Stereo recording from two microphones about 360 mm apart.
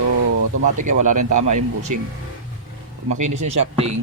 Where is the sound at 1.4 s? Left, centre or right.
Right.